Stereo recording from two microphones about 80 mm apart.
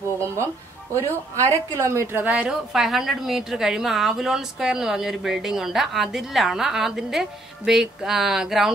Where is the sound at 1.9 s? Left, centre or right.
Right.